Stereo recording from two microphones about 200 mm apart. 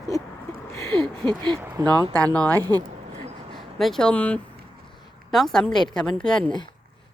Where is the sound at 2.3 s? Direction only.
10° left (ahead or behind).